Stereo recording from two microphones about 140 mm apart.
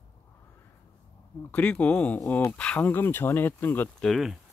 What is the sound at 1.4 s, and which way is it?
Speech, 10° left (ahead or behind).